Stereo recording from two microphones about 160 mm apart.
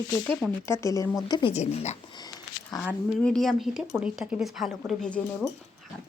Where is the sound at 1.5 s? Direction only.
45° left (ahead or behind).